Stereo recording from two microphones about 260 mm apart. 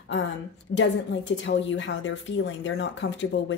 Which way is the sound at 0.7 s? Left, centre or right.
Left.